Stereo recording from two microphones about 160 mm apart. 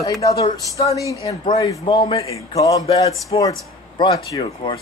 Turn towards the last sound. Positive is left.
turn(degrees=30)  # may be behind; listen again after turning